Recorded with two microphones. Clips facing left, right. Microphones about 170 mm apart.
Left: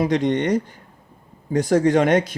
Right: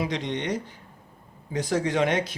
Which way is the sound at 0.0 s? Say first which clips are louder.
Left 9 dB; 50° left (ahead or behind).